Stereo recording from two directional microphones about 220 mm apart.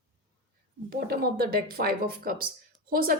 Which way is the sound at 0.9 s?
45° right (ahead or behind).